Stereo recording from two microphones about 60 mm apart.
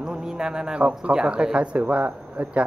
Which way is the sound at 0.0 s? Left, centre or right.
Centre.